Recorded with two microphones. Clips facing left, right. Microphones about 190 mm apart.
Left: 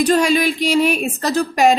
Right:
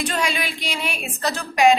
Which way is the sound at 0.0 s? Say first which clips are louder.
Left 10 dB; 40° left (ahead or behind).